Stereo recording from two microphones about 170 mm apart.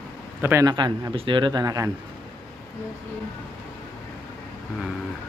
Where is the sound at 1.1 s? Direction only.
30° right (ahead or behind).